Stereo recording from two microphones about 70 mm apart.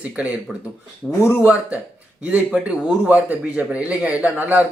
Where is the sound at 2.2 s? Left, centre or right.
Centre.